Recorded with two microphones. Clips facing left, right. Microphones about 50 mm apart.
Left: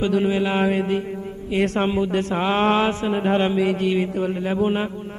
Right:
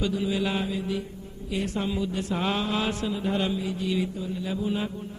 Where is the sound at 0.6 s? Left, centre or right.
Left.